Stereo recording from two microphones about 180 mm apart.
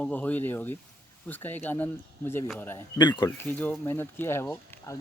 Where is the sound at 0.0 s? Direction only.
10° left (ahead or behind).